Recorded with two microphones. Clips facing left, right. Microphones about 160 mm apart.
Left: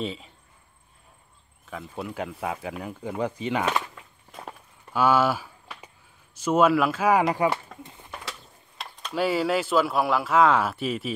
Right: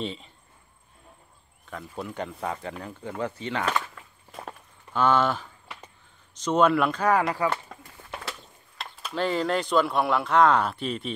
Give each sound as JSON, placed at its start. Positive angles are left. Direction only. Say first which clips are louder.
{"t": 0.0, "sound": "speech", "louder": "left 1 dB", "side_deg": 0}
{"t": 1.7, "sound": "speech", "louder": "left 1 dB", "side_deg": 5}
{"t": 4.3, "sound": "walk", "louder": "right 1 dB", "side_deg": 0}
{"t": 4.9, "sound": "speech", "louder": "left 1 dB", "side_deg": 10}
{"t": 7.2, "sound": "speech", "louder": "left 3 dB", "side_deg": 25}
{"t": 7.8, "sound": "a sound", "louder": "left 4 dB", "side_deg": 20}
{"t": 8.3, "sound": "a sound", "louder": "right 1 dB", "side_deg": -5}
{"t": 9.1, "sound": "speech", "louder": "left 2 dB", "side_deg": 10}